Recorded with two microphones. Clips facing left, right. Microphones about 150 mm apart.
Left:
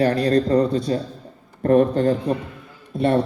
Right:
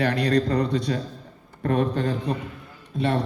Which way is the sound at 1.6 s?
45° left (ahead or behind).